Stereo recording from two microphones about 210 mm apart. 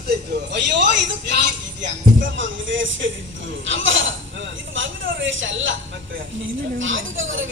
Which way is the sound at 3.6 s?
65° right (ahead or behind).